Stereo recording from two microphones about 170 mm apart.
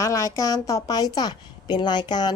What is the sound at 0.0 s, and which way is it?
A woman's voice, 20° left (ahead or behind).